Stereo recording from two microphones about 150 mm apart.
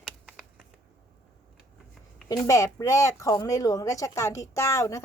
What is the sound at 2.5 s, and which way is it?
Speech, 20° left (ahead or behind).